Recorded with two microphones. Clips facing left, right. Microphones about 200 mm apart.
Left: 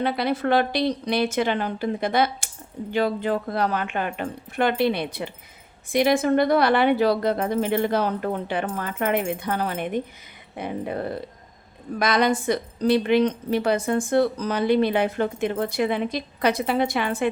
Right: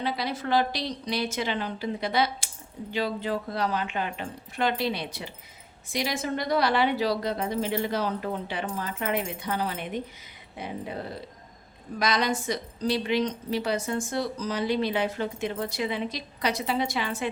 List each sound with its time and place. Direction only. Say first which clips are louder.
0.0 s a woman's voice: left 7 dB; 60° left (ahead or behind)